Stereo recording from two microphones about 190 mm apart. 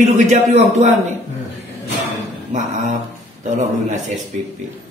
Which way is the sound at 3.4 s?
40° right (ahead or behind).